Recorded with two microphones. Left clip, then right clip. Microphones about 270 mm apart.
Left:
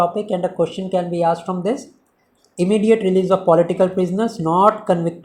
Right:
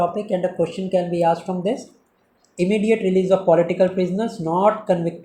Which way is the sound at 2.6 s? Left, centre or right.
Left.